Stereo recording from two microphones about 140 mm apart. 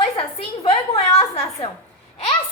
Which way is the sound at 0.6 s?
45° left (ahead or behind).